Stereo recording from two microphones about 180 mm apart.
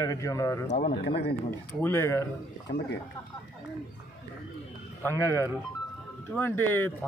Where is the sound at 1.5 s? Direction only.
15° left (ahead or behind).